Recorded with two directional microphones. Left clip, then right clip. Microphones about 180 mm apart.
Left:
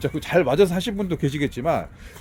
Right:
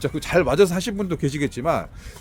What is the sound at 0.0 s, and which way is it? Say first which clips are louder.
Speech: even; centre (ahead or behind).